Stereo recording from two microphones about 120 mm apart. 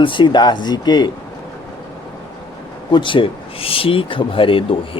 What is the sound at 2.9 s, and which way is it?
Speech, 45° left (ahead or behind).